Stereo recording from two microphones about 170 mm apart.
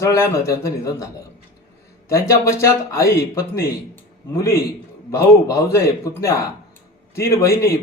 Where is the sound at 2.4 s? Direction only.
15° left (ahead or behind).